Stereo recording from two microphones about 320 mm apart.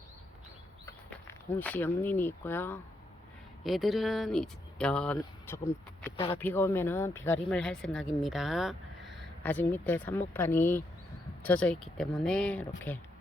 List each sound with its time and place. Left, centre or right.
0.9 s speech: centre